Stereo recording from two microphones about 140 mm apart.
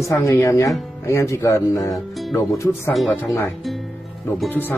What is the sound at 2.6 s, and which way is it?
Speech, 15° left (ahead or behind).